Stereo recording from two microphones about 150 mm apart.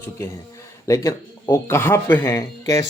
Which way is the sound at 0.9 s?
20° left (ahead or behind).